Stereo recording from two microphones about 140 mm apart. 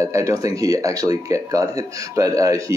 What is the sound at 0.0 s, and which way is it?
Speech, 20° right (ahead or behind).